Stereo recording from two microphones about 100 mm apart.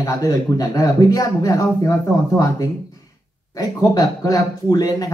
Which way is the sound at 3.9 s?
40° left (ahead or behind).